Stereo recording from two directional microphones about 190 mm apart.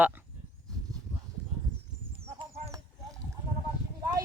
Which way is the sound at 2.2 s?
30° right (ahead or behind).